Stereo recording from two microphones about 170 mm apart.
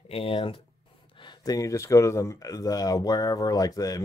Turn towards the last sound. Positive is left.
turn(degrees=20)  # may be behind; listen again after turning